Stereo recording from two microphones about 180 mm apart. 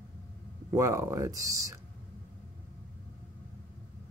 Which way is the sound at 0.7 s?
15° right (ahead or behind).